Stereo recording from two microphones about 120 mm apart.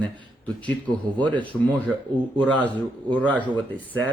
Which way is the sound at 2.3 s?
15° left (ahead or behind).